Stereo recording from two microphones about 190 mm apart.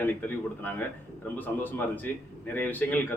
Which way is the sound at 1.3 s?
10° left (ahead or behind).